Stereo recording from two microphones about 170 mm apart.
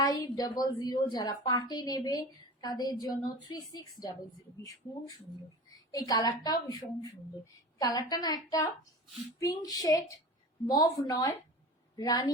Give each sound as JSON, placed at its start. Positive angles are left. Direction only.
{"t": 0.0, "sound": "a woman's voice", "side_deg": 20}
{"t": 5.9, "sound": "a woman's voice", "side_deg": 25}